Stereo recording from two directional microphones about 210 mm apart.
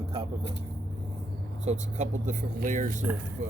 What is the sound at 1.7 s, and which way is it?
Speech, 35° right (ahead or behind).